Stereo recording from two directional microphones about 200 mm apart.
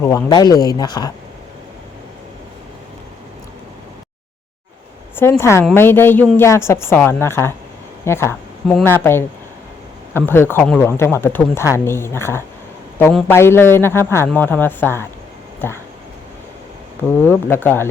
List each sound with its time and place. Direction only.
0.0 s speech: 15° left (ahead or behind)
5.4 s speech: 15° left (ahead or behind)
17.2 s speech: 10° left (ahead or behind)